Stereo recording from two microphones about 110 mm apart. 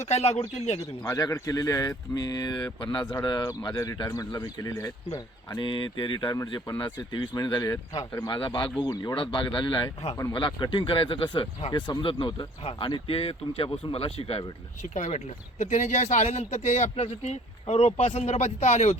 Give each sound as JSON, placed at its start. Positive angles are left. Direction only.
{"t": 0.0, "sound": "speech", "side_deg": 80}
{"t": 1.0, "sound": "speech", "side_deg": 30}
{"t": 5.5, "sound": "speech", "side_deg": 45}
{"t": 9.1, "sound": "speech", "side_deg": 50}